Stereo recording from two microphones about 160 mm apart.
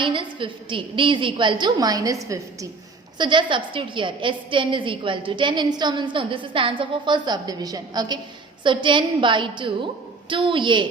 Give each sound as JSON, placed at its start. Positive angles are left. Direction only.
{"t": 0.0, "sound": "a woman's voice", "side_deg": -30}